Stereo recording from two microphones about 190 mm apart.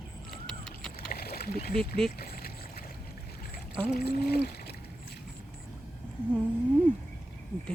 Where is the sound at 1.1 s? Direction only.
55° left (ahead or behind).